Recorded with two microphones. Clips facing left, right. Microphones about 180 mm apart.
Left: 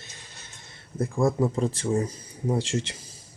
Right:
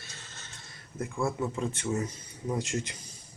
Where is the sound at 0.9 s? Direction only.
35° left (ahead or behind).